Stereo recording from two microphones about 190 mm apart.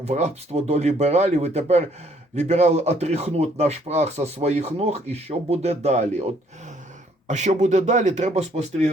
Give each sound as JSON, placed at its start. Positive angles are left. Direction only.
{"t": 0.0, "sound": "speech", "side_deg": -35}
{"t": 7.3, "sound": "speech", "side_deg": -35}